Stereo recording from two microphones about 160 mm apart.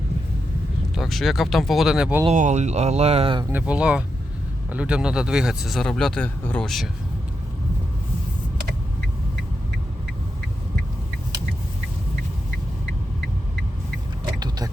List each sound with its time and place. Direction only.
0.9 s speech: centre (ahead or behind)
2.2 s speech: 50° right (ahead or behind)
3.5 s speech: 10° right (ahead or behind)
14.3 s a sound: 25° right (ahead or behind)